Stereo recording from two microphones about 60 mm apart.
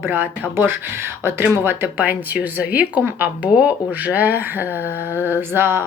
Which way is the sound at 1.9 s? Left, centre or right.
Right.